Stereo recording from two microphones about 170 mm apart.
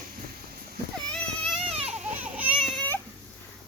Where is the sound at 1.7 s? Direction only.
35° right (ahead or behind).